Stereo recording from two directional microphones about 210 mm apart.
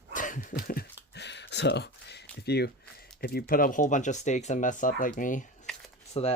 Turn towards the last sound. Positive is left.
turn(degrees=30)  # may be behind; listen again after turning